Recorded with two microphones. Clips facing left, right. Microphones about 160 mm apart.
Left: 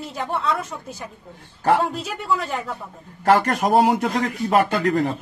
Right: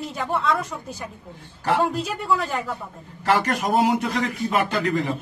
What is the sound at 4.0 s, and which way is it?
Speech, 50° left (ahead or behind).